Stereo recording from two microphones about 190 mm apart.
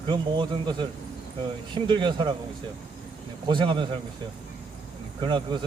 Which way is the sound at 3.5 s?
25° right (ahead or behind).